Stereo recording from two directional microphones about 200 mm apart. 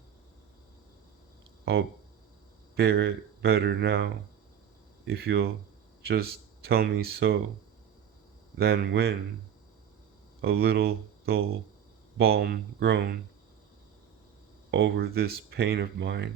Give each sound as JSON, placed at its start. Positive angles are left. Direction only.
{"t": 2.7, "sound": "speech", "side_deg": -50}
{"t": 8.5, "sound": "speech", "side_deg": -55}
{"t": 10.4, "sound": "speech", "side_deg": -50}
{"t": 14.7, "sound": "speech", "side_deg": -55}